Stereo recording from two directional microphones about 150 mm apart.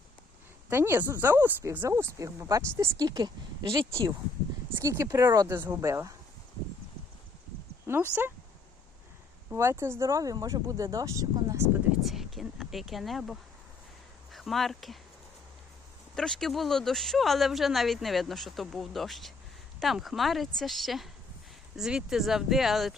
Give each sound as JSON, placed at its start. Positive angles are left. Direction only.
{"t": 0.7, "sound": "speech", "side_deg": -15}
{"t": 7.9, "sound": "speech", "side_deg": -15}
{"t": 9.5, "sound": "speech", "side_deg": -15}
{"t": 12.0, "sound": "speech", "side_deg": 0}
{"t": 16.1, "sound": "speech", "side_deg": 5}